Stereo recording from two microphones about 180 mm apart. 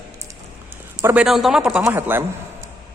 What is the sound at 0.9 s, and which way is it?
A man's voice, 5° right (ahead or behind).